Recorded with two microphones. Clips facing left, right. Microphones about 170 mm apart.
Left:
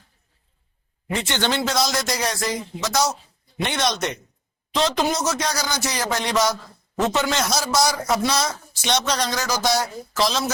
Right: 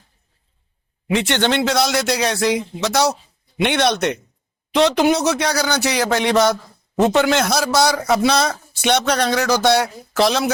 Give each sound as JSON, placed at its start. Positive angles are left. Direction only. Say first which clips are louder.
{"t": 1.1, "sound": "a man's voice", "louder": "right 6 dB", "side_deg": -70}